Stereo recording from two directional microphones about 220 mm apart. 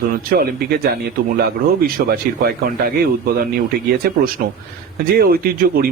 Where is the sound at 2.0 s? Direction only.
45° right (ahead or behind).